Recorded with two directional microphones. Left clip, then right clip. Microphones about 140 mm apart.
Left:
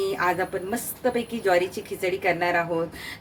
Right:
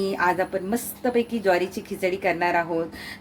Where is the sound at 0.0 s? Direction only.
40° right (ahead or behind).